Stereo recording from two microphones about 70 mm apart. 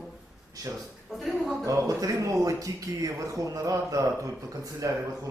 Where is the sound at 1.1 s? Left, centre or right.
Centre.